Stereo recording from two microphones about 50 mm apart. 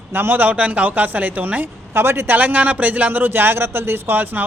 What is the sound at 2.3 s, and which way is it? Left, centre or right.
A man's voice, right.